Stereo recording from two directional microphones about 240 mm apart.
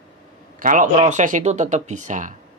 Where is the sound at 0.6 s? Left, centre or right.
Right.